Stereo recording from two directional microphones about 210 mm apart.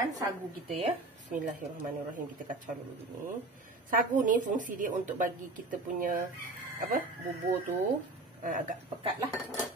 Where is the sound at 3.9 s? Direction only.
40° right (ahead or behind).